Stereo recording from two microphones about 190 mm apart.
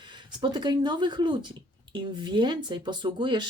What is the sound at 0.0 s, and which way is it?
Speech, 25° right (ahead or behind).